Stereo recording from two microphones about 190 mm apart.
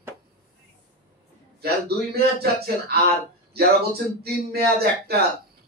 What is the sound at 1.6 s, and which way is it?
A man's voice, 55° right (ahead or behind).